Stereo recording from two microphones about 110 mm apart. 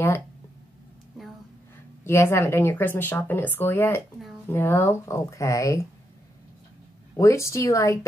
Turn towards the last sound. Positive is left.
turn(degrees=30)  # may be behind; listen again after turning